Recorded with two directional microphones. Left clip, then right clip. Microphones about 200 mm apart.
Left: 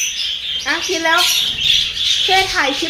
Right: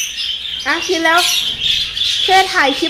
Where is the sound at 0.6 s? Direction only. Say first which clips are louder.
Right 3 dB; 50° right (ahead or behind).